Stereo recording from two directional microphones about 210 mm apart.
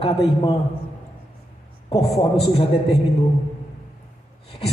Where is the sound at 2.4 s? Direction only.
25° left (ahead or behind).